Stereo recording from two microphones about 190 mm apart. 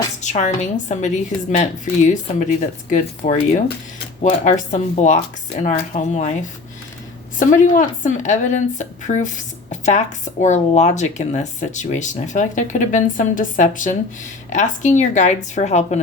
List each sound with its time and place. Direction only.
0.2 s speech: 40° left (ahead or behind)
7.3 s speech: 45° left (ahead or behind)